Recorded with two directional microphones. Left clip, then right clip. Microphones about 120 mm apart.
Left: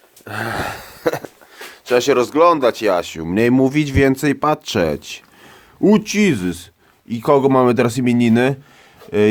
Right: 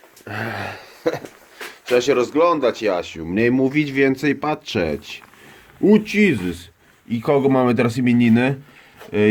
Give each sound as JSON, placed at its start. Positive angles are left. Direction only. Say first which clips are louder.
{"t": 0.4, "sound": "speech", "louder": "left 6 dB", "side_deg": 65}